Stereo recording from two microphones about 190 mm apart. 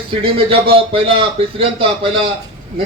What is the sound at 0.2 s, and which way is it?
A man's voice, 30° right (ahead or behind).